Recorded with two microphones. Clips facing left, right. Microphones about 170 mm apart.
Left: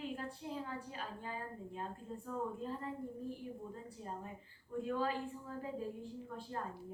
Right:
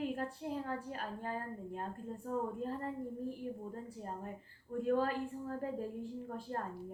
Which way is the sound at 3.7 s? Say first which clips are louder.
Right 3 dB; 50° right (ahead or behind).